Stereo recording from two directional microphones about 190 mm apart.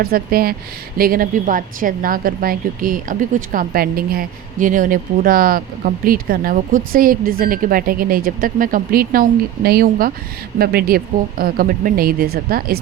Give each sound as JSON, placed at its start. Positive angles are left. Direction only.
{"t": 0.0, "sound": "a woman's voice", "side_deg": -50}